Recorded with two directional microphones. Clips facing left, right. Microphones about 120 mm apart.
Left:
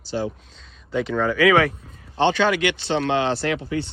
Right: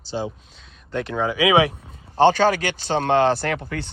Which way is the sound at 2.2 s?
45° right (ahead or behind).